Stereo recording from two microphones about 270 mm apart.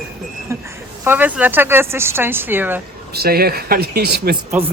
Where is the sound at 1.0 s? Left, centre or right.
Centre.